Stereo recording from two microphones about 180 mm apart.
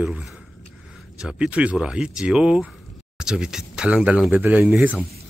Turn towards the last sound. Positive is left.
turn(degrees=-5)  # may be behind; listen again after turning